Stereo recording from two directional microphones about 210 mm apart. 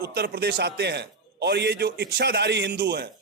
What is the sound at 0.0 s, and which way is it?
A man's voice, 50° right (ahead or behind).